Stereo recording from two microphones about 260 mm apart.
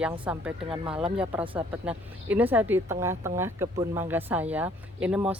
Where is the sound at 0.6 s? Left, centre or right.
Centre.